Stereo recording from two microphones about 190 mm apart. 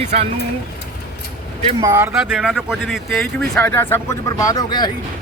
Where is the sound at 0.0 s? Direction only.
35° right (ahead or behind).